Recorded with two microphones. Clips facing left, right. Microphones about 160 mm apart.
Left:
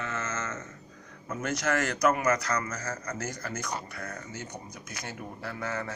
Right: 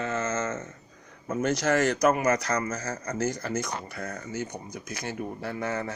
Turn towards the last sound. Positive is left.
turn(degrees=-25)  # may be behind; listen again after turning